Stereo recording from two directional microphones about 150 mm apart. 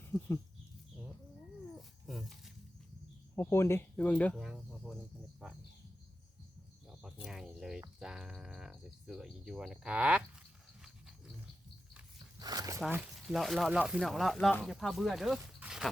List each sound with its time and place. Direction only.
2.0 s dog: centre (ahead or behind)
3.3 s speech: 15° left (ahead or behind)
4.4 s a sound: 5° right (ahead or behind)
5.4 s bird: 5° right (ahead or behind)
7.0 s speech: 5° right (ahead or behind)
12.4 s speech: 25° right (ahead or behind)
12.9 s speech: 5° right (ahead or behind)